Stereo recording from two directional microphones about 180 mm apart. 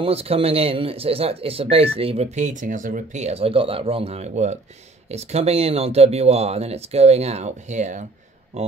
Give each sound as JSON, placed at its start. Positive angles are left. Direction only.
{"t": 0.0, "sound": "speech", "side_deg": -35}